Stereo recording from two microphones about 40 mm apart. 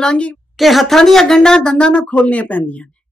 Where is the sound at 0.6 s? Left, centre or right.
Centre.